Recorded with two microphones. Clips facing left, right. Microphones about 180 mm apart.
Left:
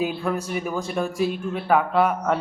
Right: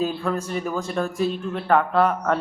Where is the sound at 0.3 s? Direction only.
15° left (ahead or behind).